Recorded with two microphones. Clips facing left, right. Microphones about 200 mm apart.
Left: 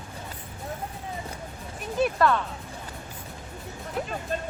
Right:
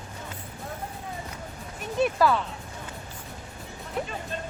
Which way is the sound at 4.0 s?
Centre (ahead or behind).